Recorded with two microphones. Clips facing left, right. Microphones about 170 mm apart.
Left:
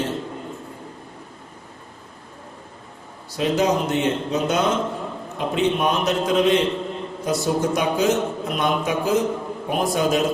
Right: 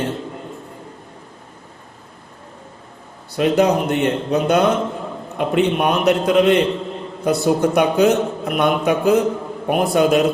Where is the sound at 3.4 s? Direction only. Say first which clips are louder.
Right 4 dB; 60° right (ahead or behind).